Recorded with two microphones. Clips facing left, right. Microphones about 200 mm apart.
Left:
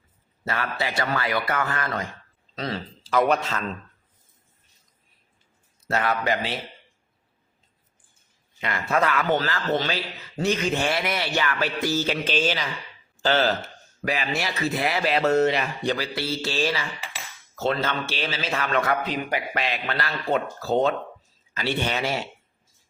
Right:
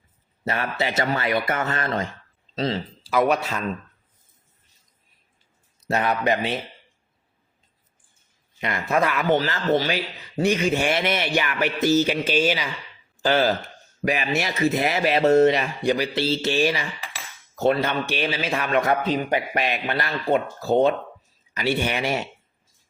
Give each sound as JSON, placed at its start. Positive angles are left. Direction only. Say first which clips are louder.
{"t": 0.4, "sound": "speech", "louder": "right 3 dB", "side_deg": -20}
{"t": 3.0, "sound": "speech", "louder": "even", "side_deg": -5}
{"t": 5.9, "sound": "speech", "louder": "right 2 dB", "side_deg": -20}
{"t": 8.6, "sound": "speech", "louder": "right 1 dB", "side_deg": -15}
{"t": 10.9, "sound": "speech", "louder": "right 3 dB", "side_deg": -25}
{"t": 12.2, "sound": "speech", "louder": "right 3 dB", "side_deg": -10}
{"t": 15.8, "sound": "speech", "louder": "right 4 dB", "side_deg": -10}
{"t": 16.1, "sound": "speech", "louder": "right 5 dB", "side_deg": -25}